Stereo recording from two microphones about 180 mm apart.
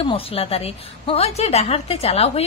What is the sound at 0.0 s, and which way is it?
A woman's voice, 30° left (ahead or behind).